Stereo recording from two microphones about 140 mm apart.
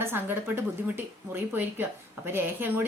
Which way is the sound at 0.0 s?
15° right (ahead or behind).